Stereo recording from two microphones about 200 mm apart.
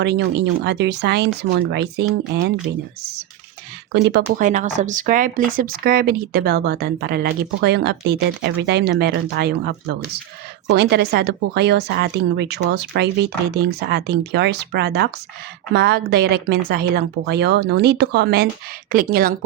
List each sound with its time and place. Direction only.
0.0 s speech: 60° right (ahead or behind)
3.9 s speech: 55° right (ahead or behind)